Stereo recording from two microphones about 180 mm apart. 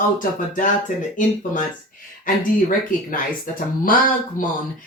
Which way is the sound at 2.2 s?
50° left (ahead or behind).